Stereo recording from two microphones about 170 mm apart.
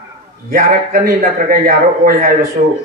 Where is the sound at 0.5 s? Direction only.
60° right (ahead or behind).